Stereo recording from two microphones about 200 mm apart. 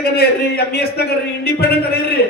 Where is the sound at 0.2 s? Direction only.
55° left (ahead or behind).